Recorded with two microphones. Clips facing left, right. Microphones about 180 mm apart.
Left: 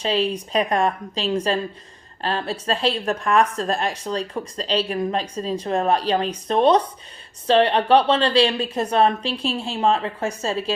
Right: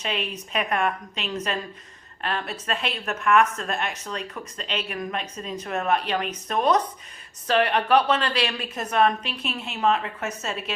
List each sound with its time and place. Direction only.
0.0 s a woman's voice: 30° left (ahead or behind)